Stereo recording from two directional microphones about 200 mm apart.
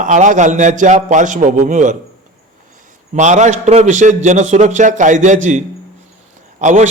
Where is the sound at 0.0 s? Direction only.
40° right (ahead or behind).